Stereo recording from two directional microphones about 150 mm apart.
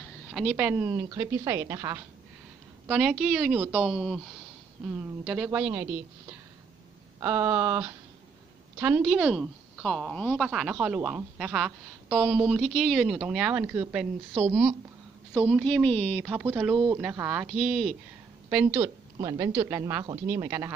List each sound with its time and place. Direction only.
0.3 s a woman's voice: 5° right (ahead or behind)
1.0 s a woman's voice: 20° right (ahead or behind)
2.9 s a woman's voice: 5° right (ahead or behind)
7.2 s a woman's voice: 15° right (ahead or behind)
11.0 s a woman's voice: 15° right (ahead or behind)
11.3 s a woman's voice: 5° right (ahead or behind)
15.6 s speech: 10° left (ahead or behind)
16.2 s a woman's voice: 10° right (ahead or behind)
19.1 s a woman's voice: 25° right (ahead or behind)